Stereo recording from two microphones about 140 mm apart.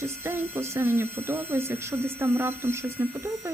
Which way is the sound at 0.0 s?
15° right (ahead or behind).